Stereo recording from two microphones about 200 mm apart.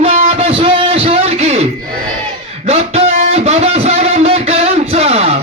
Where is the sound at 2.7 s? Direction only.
30° right (ahead or behind).